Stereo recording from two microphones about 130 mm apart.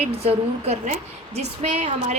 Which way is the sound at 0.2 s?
50° right (ahead or behind).